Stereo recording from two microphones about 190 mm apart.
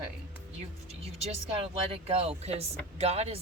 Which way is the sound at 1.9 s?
30° right (ahead or behind).